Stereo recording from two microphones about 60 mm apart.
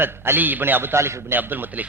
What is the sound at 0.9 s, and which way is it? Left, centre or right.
Speech, right.